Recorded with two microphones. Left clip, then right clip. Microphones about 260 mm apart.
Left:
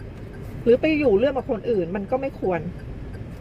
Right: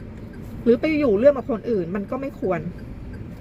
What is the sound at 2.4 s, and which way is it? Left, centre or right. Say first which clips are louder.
Speech: right 3 dB; right.